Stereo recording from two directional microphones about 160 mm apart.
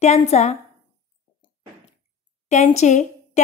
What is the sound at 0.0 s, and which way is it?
Speech, 45° left (ahead or behind).